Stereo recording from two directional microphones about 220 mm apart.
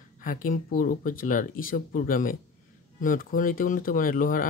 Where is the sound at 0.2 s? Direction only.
40° left (ahead or behind).